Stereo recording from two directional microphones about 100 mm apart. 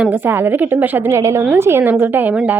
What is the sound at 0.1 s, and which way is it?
Speech, 20° right (ahead or behind).